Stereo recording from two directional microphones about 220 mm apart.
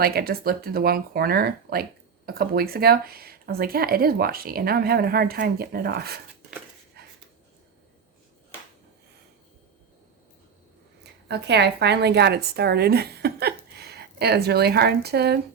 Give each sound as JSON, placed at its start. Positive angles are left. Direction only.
{"t": 0.0, "sound": "speech", "side_deg": -45}
{"t": 7.0, "sound": "a sound", "side_deg": -45}
{"t": 11.0, "sound": "a woman's voice", "side_deg": -50}